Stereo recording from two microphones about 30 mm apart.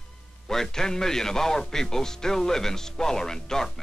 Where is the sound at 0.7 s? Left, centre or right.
Left.